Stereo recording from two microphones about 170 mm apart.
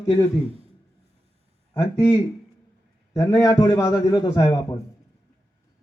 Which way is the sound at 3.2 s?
20° left (ahead or behind).